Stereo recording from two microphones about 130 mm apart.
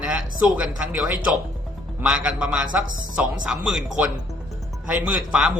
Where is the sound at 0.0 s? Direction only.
10° right (ahead or behind).